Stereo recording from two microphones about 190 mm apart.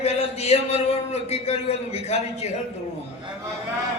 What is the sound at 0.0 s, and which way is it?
A man's voice, 35° left (ahead or behind).